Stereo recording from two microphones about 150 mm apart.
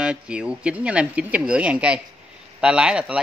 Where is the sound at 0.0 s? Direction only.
5° right (ahead or behind).